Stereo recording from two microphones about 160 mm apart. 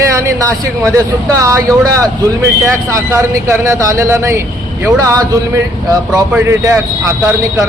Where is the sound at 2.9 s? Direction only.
20° right (ahead or behind).